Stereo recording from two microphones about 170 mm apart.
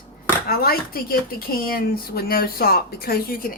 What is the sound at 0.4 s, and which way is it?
Speech, 60° left (ahead or behind).